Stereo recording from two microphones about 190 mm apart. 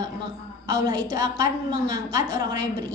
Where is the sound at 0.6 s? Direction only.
20° right (ahead or behind).